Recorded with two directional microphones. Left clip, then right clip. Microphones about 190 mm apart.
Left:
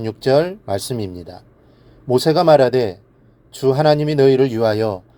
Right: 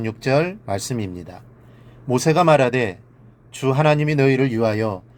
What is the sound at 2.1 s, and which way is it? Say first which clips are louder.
Speech: left 3 dB; 25° left (ahead or behind).